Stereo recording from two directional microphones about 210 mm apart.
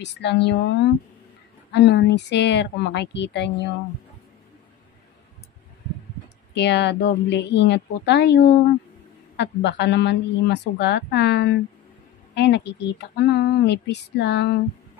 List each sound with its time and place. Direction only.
0.0 s a woman's voice: 55° left (ahead or behind)
6.5 s a woman's voice: 55° left (ahead or behind)